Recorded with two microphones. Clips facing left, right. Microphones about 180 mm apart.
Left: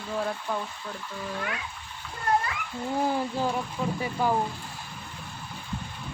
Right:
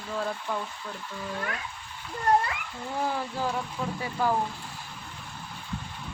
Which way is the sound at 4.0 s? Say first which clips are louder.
Even; 15° left (ahead or behind).